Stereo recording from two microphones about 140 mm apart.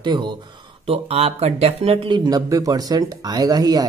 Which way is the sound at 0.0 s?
30° right (ahead or behind).